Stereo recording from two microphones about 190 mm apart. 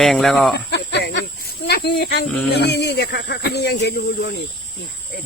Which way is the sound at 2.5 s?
60° left (ahead or behind).